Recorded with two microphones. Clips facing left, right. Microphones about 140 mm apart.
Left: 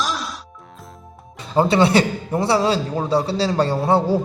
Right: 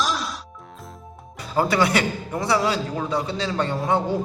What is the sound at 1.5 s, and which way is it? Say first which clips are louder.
A man's voice: left 5 dB; 25° left (ahead or behind).